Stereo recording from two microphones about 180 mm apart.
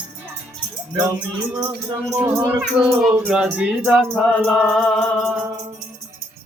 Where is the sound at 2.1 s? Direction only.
15° right (ahead or behind); by 5.4 s 5° left (ahead or behind).